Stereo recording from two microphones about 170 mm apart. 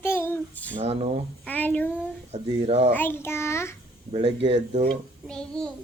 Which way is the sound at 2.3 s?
40° right (ahead or behind).